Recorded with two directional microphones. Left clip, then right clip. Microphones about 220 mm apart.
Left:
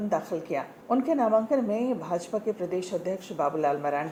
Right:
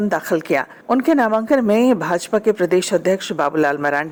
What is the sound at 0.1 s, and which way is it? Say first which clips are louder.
Speech: right 8 dB; 35° right (ahead or behind).